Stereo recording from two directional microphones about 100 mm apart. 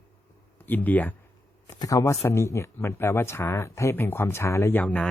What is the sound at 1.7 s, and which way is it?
Speech, 35° left (ahead or behind).